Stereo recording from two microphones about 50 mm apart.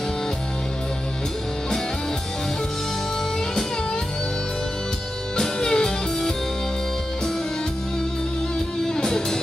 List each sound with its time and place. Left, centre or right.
5.4 s music: centre
8.8 s music: centre